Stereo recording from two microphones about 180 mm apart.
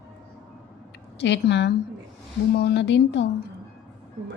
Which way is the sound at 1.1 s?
75° left (ahead or behind).